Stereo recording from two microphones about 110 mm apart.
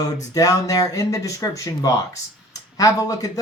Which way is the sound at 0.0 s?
35° left (ahead or behind).